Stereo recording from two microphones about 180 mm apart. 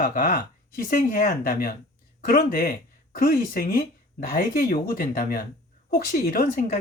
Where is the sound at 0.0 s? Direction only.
50° left (ahead or behind).